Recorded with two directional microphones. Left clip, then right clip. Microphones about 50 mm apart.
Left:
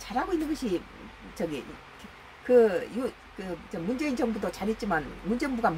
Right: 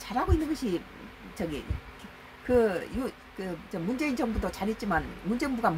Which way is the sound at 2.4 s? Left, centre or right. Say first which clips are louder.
Left 4 dB; centre.